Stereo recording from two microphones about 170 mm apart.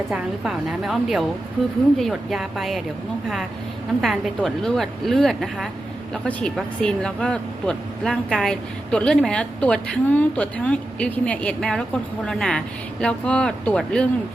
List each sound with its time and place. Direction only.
0.1 s speech: 5° right (ahead or behind)
4.0 s speech: centre (ahead or behind)